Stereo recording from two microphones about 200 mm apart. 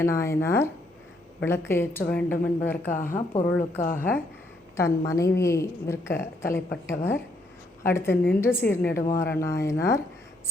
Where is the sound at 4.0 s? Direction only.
10° left (ahead or behind).